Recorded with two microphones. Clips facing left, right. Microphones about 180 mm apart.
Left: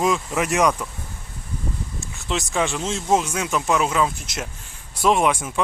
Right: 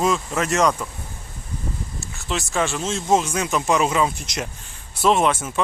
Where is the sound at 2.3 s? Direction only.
15° left (ahead or behind); by 4.4 s centre (ahead or behind).